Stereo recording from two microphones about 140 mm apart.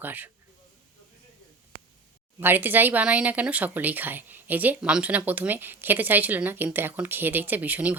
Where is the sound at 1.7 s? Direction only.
70° right (ahead or behind).